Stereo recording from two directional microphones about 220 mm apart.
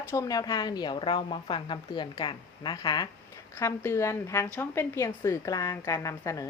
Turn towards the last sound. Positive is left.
turn(degrees=15)  # may be behind; listen again after turning